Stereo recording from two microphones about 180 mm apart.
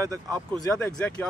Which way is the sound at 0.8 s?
5° left (ahead or behind).